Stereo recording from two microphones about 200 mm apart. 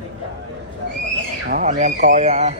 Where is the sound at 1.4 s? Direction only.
40° right (ahead or behind).